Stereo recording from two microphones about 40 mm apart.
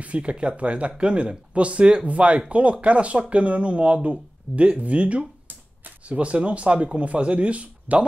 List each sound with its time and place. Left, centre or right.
0.0 s speech: right